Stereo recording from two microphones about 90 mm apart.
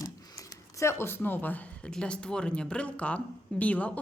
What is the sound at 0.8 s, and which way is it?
Speech, 30° left (ahead or behind).